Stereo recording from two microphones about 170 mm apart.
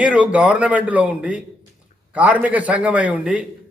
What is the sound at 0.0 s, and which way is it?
A man's voice, 5° right (ahead or behind).